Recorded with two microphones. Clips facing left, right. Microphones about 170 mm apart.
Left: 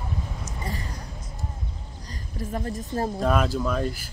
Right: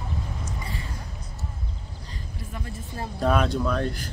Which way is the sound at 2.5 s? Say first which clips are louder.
Left 9 dB; 40° left (ahead or behind).